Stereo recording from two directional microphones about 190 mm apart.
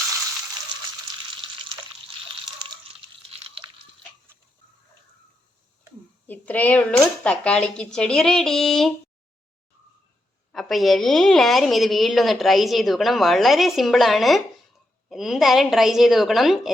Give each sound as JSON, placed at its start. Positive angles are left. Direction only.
{"t": 3.2, "sound": "crunch", "side_deg": -30}
{"t": 6.2, "sound": "a woman's voice", "side_deg": 10}
{"t": 10.5, "sound": "a woman's voice", "side_deg": 0}